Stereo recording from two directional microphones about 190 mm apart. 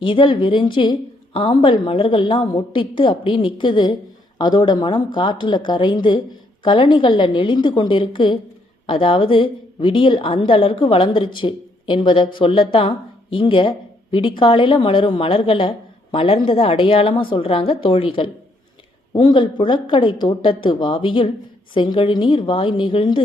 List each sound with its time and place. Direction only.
0.0 s a woman's voice: 25° left (ahead or behind)